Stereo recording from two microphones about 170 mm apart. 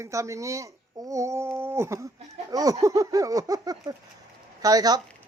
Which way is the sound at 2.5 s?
20° right (ahead or behind).